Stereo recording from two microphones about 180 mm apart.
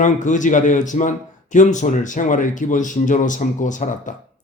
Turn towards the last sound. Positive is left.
turn(degrees=45)  # may be behind; listen again after turning